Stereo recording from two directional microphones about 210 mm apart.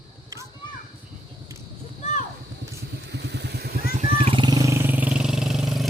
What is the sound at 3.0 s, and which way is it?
Vehicle, 55° right (ahead or behind).